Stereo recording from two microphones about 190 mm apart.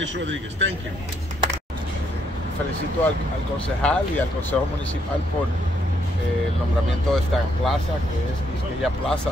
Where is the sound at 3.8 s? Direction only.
5° left (ahead or behind).